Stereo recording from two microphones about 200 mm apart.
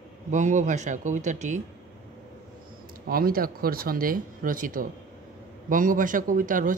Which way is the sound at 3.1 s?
45° right (ahead or behind).